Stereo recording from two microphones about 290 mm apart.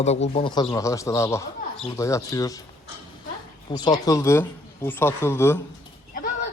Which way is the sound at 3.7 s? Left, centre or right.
Centre.